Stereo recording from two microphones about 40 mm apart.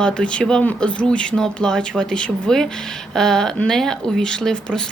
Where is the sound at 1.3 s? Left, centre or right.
Centre.